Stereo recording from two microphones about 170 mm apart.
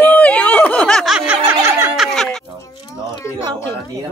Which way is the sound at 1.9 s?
Centre (ahead or behind).